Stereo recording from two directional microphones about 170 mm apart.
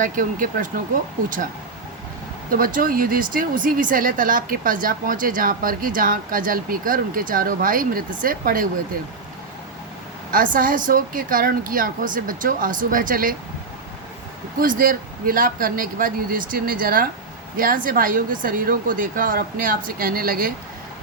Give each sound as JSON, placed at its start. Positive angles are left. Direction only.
{"t": 0.0, "sound": "speech", "side_deg": -50}
{"t": 2.5, "sound": "speech", "side_deg": -55}
{"t": 10.3, "sound": "speech", "side_deg": -55}
{"t": 14.6, "sound": "speech", "side_deg": -55}